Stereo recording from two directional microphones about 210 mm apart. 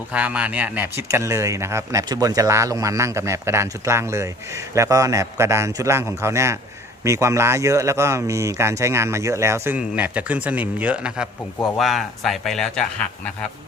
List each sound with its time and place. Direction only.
0.1 s speech: 5° right (ahead or behind)